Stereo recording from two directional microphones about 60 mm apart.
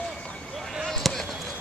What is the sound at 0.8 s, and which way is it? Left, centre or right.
Basketball bounce, centre.